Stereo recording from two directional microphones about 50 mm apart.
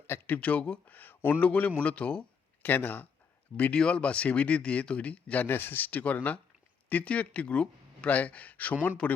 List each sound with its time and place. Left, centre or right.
0.3 s speech: left
2.6 s speech: left
3.8 s speech: centre; by 5.9 s left
5.9 s speech: left